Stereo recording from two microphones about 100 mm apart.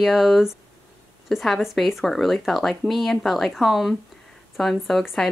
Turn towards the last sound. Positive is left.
turn(degrees=0)  # may be behind; listen again after turning